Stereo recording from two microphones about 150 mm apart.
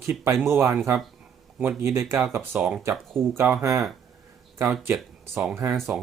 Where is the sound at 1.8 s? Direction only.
20° right (ahead or behind).